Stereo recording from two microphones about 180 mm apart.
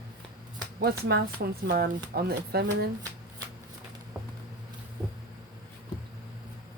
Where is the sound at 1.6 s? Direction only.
55° right (ahead or behind).